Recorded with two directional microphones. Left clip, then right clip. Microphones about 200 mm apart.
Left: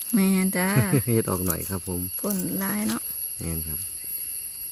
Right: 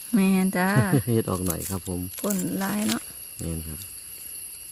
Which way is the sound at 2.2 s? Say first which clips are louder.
Right 2 dB; 25° right (ahead or behind).